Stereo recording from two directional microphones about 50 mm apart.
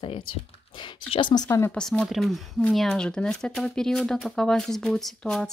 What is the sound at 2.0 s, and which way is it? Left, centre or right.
Speech, centre.